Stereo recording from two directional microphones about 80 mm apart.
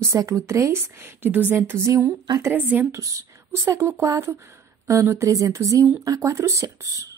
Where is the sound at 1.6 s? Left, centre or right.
Right.